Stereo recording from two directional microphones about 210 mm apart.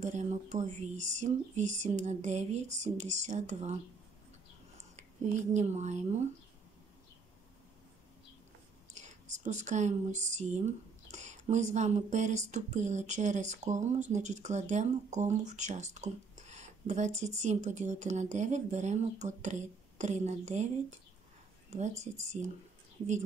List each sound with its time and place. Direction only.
0.0 s speech: 35° right (ahead or behind)
5.5 s speech: 35° right (ahead or behind)
8.9 s speech: 35° right (ahead or behind)